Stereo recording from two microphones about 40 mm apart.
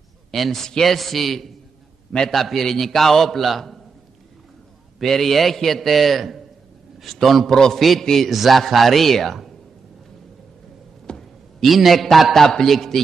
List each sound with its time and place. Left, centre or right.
0.3 s a man's voice: centre
4.9 s a man's voice: centre
8.3 s a man's voice: centre
11.1 s a man's voice: centre